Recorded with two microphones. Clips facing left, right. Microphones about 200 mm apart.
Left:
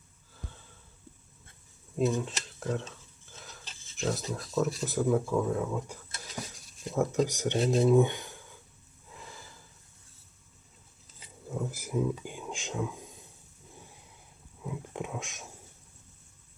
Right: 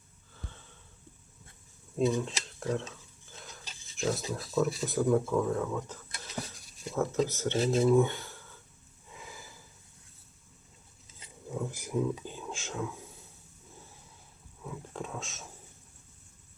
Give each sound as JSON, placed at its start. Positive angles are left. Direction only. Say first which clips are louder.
{"t": 0.3, "sound": "a sound", "louder": "left 1 dB", "side_deg": 5}
{"t": 2.0, "sound": "speech", "louder": "even", "side_deg": 0}
{"t": 6.5, "sound": "stir", "louder": "left 2 dB", "side_deg": 0}
{"t": 7.3, "sound": "speech", "louder": "left 1 dB", "side_deg": 15}
{"t": 7.6, "sound": "speech", "louder": "left 1 dB", "side_deg": 0}
{"t": 7.9, "sound": "a sound", "louder": "left 1 dB", "side_deg": 15}
{"t": 9.0, "sound": "gasp", "louder": "even", "side_deg": 0}
{"t": 11.2, "sound": "dishes", "louder": "even", "side_deg": 0}
{"t": 12.2, "sound": "whispering", "louder": "left 1 dB", "side_deg": 15}
{"t": 13.7, "sound": "a sound", "louder": "left 2 dB", "side_deg": 15}